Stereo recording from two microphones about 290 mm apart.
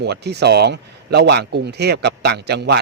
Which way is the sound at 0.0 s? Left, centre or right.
Right.